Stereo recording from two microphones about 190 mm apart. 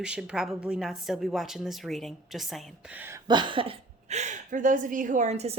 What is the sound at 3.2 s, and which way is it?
Speech, 25° right (ahead or behind).